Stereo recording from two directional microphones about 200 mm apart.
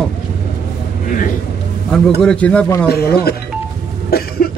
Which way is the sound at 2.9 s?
50° left (ahead or behind).